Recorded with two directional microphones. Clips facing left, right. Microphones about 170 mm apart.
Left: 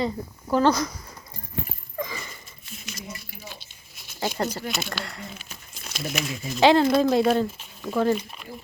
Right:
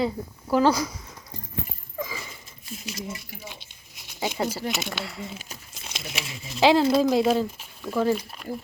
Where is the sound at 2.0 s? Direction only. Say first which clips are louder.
Left 1 dB; 5° right (ahead or behind).